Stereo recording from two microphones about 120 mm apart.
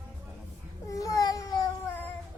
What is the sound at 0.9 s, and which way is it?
Cat, 30° left (ahead or behind).